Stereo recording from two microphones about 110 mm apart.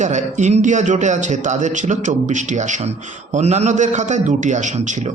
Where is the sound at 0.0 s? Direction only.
90° right.